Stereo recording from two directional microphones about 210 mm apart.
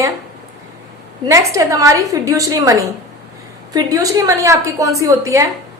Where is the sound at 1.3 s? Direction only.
15° right (ahead or behind).